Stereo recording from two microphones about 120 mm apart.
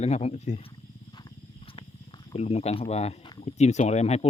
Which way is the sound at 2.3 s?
60° left (ahead or behind).